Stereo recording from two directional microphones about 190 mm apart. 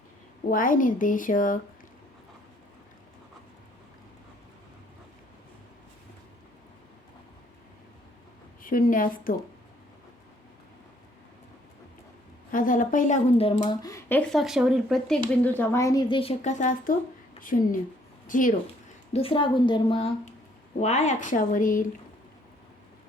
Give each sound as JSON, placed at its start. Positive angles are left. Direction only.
{"t": 0.5, "sound": "speech", "side_deg": 45}
{"t": 8.6, "sound": "speech", "side_deg": 45}
{"t": 12.5, "sound": "a woman's voice", "side_deg": 45}
{"t": 19.1, "sound": "a woman's voice", "side_deg": 30}
{"t": 20.7, "sound": "speech", "side_deg": 35}